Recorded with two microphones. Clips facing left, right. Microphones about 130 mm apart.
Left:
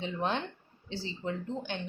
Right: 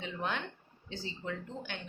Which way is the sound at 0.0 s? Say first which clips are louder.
Left 5 dB; 30° left (ahead or behind).